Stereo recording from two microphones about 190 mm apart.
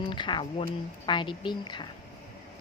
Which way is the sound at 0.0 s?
25° left (ahead or behind).